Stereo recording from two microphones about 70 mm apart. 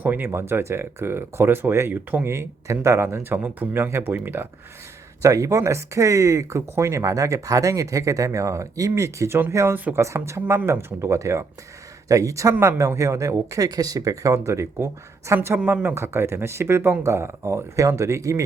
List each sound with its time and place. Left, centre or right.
0.0 s speech: right
3.4 s speech: right
3.8 s speech: right
5.2 s speech: right
13.5 s speech: right
15.4 s speech: right
16.0 s speech: right